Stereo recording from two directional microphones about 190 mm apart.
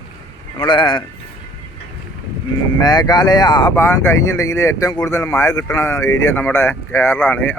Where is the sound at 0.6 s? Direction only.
25° left (ahead or behind).